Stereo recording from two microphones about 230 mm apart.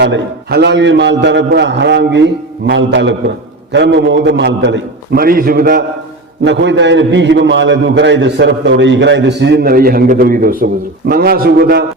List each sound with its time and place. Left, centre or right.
0.0 s a man's voice: right